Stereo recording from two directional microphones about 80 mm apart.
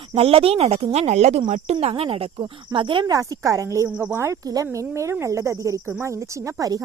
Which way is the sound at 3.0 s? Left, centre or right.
Right.